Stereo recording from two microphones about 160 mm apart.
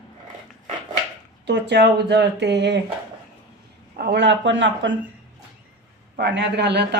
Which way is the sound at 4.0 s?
90° right.